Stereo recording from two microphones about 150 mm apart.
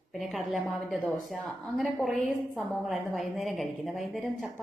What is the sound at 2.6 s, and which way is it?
A woman's voice, centre (ahead or behind).